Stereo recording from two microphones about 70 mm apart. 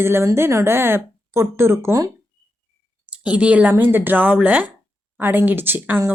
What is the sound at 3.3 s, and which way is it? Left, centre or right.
Speech, centre.